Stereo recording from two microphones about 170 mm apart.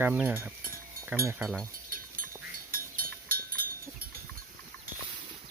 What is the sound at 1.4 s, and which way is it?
Speech, centre (ahead or behind).